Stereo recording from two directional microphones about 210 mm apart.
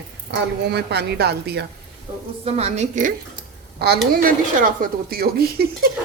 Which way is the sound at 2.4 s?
30° right (ahead or behind).